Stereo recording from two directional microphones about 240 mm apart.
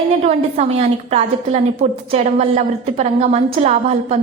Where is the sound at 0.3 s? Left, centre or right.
Right.